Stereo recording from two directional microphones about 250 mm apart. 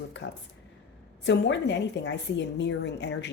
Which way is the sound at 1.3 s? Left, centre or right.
Left.